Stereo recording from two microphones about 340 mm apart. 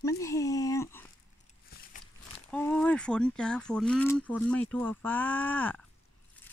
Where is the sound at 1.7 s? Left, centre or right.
Left.